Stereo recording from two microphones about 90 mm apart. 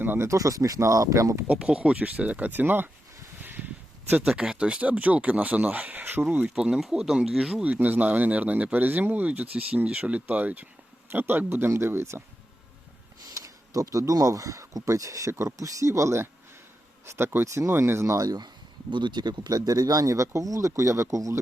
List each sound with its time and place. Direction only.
0.0 s speech: 25° right (ahead or behind)
0.3 s speech: 40° right (ahead or behind)
1.5 s speech: 10° right (ahead or behind)
3.4 s a sound: 20° right (ahead or behind)
4.3 s speech: 10° right (ahead or behind)
6.5 s speech: 5° right (ahead or behind)
7.6 s speech: 20° right (ahead or behind)
13.3 s speech: 40° right (ahead or behind)